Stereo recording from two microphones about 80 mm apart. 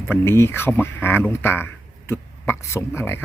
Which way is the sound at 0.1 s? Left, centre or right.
Left.